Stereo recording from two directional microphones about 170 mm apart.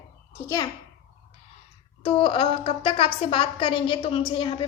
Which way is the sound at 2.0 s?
30° left (ahead or behind).